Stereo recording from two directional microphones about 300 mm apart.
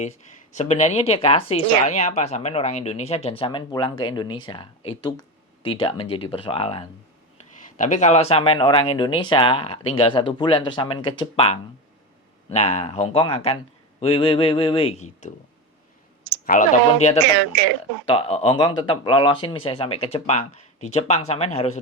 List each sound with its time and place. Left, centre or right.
0.5 s speech: left
16.5 s speech: left